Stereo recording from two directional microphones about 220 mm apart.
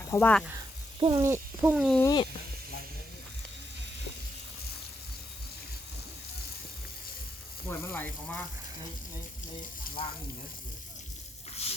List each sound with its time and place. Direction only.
0.1 s speech: 10° left (ahead or behind)
0.9 s speech: 20° right (ahead or behind); by 2.0 s 5° right (ahead or behind)
2.0 s speech: 15° left (ahead or behind)
7.7 s speech: 10° left (ahead or behind)